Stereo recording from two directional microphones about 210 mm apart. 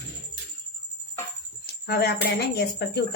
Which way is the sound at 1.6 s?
50° left (ahead or behind).